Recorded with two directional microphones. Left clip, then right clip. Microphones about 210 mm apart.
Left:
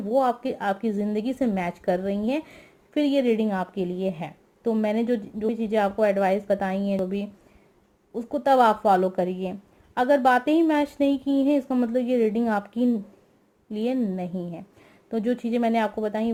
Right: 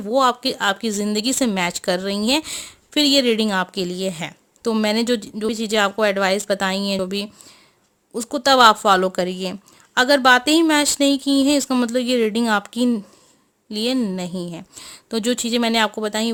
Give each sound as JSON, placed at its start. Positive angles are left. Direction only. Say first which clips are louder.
{"t": 0.1, "sound": "speech", "louder": "right 5 dB", "side_deg": -40}
{"t": 8.4, "sound": "speech", "louder": "right 6 dB", "side_deg": -35}